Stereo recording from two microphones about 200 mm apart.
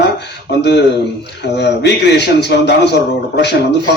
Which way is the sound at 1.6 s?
55° left (ahead or behind).